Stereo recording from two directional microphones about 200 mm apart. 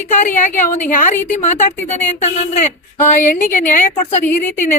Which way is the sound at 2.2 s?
35° left (ahead or behind).